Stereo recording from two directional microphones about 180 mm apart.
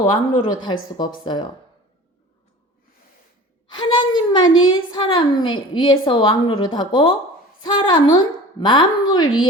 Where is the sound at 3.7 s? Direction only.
25° left (ahead or behind).